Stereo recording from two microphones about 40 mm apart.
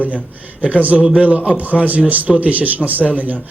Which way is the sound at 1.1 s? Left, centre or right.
Right.